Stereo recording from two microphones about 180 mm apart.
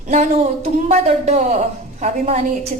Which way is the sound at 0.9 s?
35° right (ahead or behind).